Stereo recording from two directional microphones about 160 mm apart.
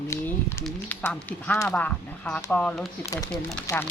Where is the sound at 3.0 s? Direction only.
20° left (ahead or behind).